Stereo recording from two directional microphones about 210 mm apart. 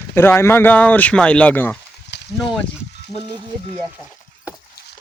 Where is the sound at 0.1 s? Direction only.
10° left (ahead or behind).